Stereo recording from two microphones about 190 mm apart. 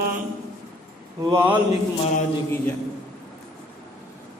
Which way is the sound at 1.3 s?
10° right (ahead or behind).